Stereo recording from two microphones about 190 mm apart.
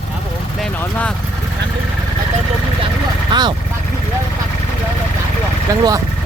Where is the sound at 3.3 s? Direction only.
25° right (ahead or behind).